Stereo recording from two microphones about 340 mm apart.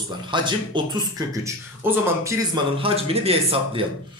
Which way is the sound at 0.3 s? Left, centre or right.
Centre.